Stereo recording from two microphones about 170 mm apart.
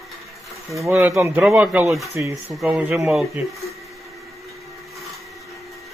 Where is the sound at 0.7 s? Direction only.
15° right (ahead or behind).